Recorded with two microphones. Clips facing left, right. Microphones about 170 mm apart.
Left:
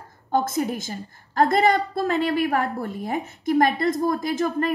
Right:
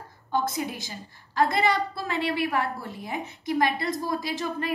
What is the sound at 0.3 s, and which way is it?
A woman's voice, 50° left (ahead or behind).